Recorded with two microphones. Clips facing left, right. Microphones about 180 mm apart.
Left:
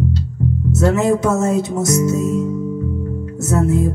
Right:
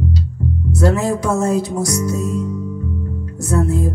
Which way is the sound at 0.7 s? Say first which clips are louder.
Left 2 dB; 25° left (ahead or behind).